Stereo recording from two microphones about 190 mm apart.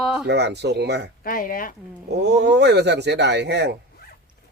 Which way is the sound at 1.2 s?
50° left (ahead or behind).